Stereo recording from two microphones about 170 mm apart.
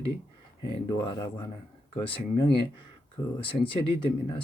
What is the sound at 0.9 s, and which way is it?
Speech, 20° left (ahead or behind).